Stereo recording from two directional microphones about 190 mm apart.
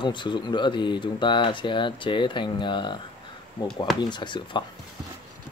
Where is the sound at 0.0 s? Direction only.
25° left (ahead or behind).